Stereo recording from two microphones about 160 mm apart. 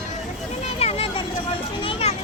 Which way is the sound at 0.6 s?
40° left (ahead or behind).